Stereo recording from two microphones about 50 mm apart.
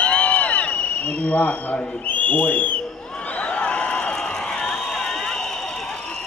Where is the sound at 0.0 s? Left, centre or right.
Left.